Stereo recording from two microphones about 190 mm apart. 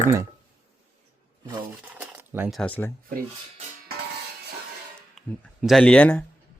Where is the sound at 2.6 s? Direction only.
10° left (ahead or behind).